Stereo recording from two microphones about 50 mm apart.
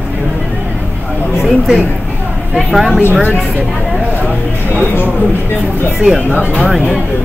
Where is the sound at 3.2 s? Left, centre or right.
Right.